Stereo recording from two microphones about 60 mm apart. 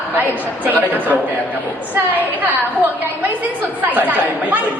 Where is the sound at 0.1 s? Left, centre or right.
Right.